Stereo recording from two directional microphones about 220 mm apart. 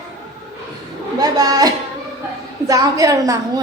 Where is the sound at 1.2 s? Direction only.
15° right (ahead or behind).